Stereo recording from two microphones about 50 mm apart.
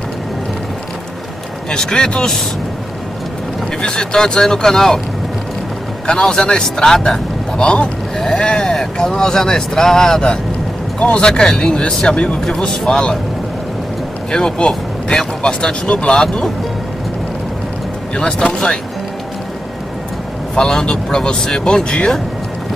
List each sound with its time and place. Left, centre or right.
1.7 s speech: centre
3.8 s speech: centre
6.0 s speech: centre
11.0 s speech: left
11.2 s speech: centre
14.3 s speech: centre
18.1 s speech: left
20.5 s speech: centre